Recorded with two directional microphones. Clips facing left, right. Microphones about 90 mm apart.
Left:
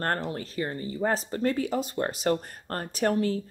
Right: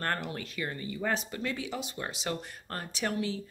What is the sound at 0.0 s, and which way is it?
Speech, 35° left (ahead or behind).